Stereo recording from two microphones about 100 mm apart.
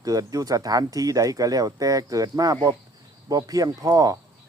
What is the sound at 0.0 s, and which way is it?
Speech, 35° right (ahead or behind).